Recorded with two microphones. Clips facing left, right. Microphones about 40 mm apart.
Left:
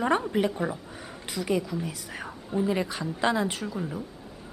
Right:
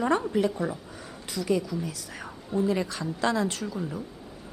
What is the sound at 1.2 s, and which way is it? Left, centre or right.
A woman's voice, centre.